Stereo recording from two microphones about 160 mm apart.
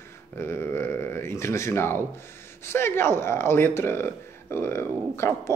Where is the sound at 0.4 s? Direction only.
15° left (ahead or behind).